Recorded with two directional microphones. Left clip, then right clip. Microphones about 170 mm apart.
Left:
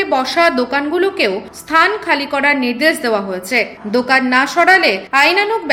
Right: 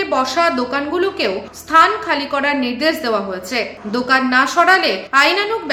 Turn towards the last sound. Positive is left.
turn(degrees=20)  # may be behind; listen again after turning